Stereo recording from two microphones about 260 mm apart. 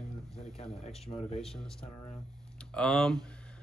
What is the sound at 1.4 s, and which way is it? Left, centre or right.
Speech, centre.